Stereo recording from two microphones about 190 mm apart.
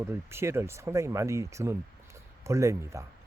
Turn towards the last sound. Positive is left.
turn(degrees=-15)  # may be behind; listen again after turning